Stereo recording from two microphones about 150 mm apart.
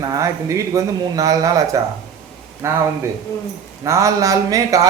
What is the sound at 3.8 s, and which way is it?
Speech, 20° right (ahead or behind).